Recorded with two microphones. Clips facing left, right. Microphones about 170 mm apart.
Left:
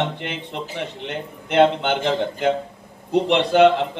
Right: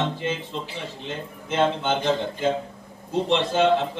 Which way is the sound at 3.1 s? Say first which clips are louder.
Left 6 dB; 65° left (ahead or behind).